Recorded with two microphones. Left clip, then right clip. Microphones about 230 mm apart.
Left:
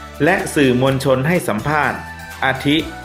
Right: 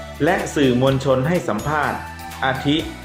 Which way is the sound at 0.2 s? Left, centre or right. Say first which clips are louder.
Left 3 dB; left.